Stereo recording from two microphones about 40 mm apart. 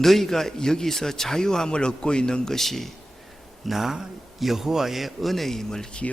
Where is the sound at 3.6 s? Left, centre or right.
Centre.